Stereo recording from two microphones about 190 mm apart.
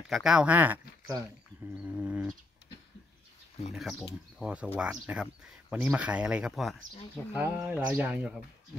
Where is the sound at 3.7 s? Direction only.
Centre (ahead or behind).